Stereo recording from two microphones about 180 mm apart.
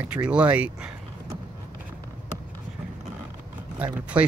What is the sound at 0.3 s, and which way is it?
Speech, 5° right (ahead or behind).